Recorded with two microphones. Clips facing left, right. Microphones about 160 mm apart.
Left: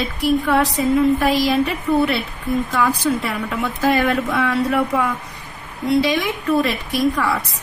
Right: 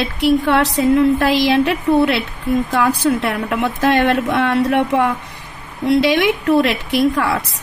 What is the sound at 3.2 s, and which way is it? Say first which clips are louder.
Speech: right 4 dB; 75° right (ahead or behind).